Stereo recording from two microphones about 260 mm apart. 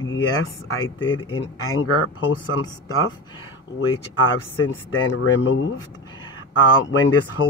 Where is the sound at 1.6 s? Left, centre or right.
Left.